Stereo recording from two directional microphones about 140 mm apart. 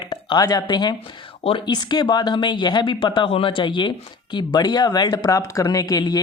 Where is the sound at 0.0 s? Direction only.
35° left (ahead or behind).